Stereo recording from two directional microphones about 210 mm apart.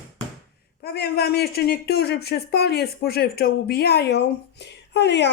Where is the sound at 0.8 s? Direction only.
50° left (ahead or behind).